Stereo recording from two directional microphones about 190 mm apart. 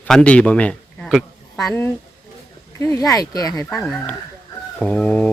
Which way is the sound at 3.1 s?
20° left (ahead or behind).